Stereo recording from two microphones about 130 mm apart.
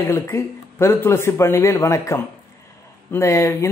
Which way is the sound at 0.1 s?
20° left (ahead or behind).